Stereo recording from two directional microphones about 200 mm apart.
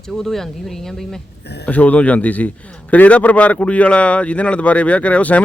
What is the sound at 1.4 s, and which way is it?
Speech, 55° left (ahead or behind).